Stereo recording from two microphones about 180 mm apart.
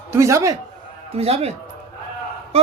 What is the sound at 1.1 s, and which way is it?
Speech, 35° right (ahead or behind).